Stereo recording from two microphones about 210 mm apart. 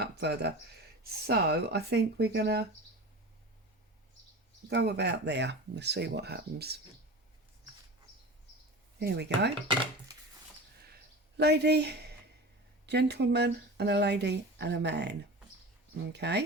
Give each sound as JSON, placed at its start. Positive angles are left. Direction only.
{"t": 0.0, "sound": "a sound", "side_deg": -55}
{"t": 1.3, "sound": "speech", "side_deg": -50}
{"t": 4.7, "sound": "speech", "side_deg": -55}
{"t": 9.0, "sound": "speech", "side_deg": -50}
{"t": 10.8, "sound": "a sound", "side_deg": -50}
{"t": 12.8, "sound": "speech", "side_deg": -55}
{"t": 16.1, "sound": "speech", "side_deg": -55}